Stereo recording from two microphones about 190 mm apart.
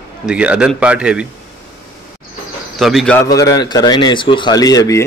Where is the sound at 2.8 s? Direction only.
Centre (ahead or behind).